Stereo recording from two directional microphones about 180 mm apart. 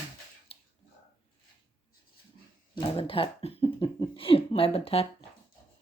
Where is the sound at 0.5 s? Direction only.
30° left (ahead or behind).